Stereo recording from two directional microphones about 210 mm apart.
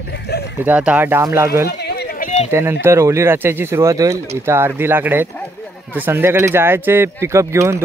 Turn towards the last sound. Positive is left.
turn(degrees=-15)  # may be behind; listen again after turning